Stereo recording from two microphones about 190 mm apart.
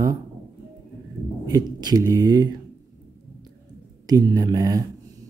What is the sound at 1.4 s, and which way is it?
Speech, 20° right (ahead or behind).